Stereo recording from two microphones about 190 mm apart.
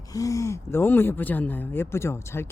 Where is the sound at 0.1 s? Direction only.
15° left (ahead or behind).